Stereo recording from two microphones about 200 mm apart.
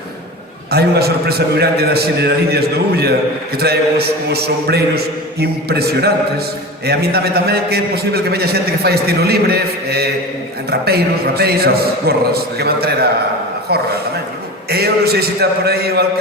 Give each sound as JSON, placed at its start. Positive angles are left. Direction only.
{"t": 0.7, "sound": "a man's voice", "side_deg": -50}
{"t": 14.7, "sound": "a man's voice", "side_deg": -50}